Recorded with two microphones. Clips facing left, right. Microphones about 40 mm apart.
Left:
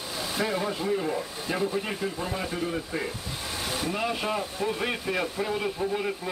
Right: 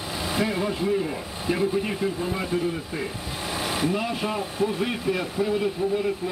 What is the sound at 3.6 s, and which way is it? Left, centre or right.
Vehicle, right.